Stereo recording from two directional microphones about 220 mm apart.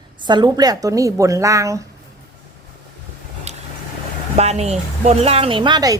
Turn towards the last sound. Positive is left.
turn(degrees=-20)  # may be behind; listen again after turning